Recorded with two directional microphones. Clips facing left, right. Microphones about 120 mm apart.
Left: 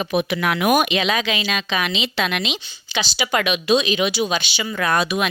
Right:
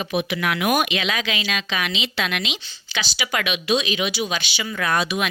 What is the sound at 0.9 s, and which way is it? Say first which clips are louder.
Speech: left 4 dB; 25° left (ahead or behind).